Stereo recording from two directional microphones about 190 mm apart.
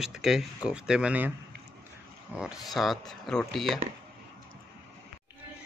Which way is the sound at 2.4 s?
Centre (ahead or behind).